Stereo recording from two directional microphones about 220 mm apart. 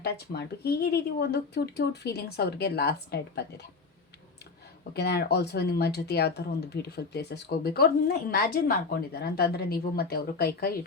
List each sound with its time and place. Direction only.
0.0 s a woman's voice: 45° left (ahead or behind)
4.9 s a woman's voice: 45° left (ahead or behind)